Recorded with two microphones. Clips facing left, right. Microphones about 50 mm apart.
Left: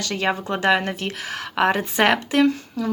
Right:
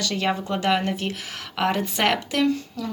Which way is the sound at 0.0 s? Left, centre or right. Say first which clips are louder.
Left 1 dB; left.